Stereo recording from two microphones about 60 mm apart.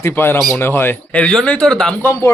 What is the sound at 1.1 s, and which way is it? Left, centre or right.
Speech, centre.